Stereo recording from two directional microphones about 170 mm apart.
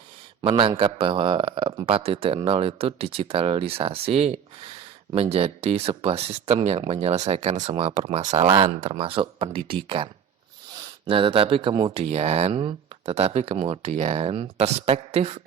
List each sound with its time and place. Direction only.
0.4 s speech: 35° right (ahead or behind)
8.3 s speech: 25° right (ahead or behind)
8.7 s speech: 35° right (ahead or behind)